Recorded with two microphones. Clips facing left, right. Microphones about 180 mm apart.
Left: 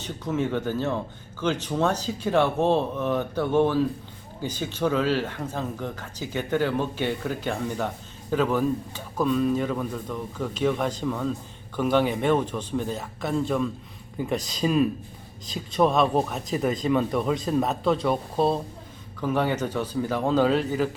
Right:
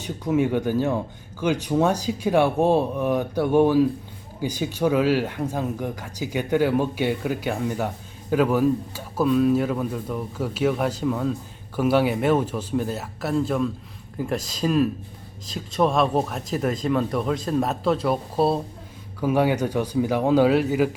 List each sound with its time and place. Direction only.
0.0 s speech: 10° right (ahead or behind)